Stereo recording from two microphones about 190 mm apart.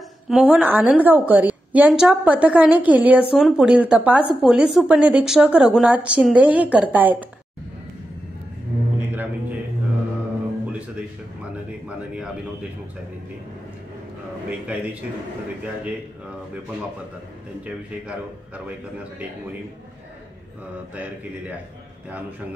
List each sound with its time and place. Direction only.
0.3 s a woman's voice: 5° right (ahead or behind)
14.7 s a woman's voice: 5° right (ahead or behind)
20.9 s a woman's voice: 10° right (ahead or behind)